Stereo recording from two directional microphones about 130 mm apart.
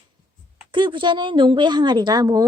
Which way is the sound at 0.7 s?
40° right (ahead or behind).